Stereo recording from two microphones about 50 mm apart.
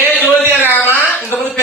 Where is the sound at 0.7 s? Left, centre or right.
Left.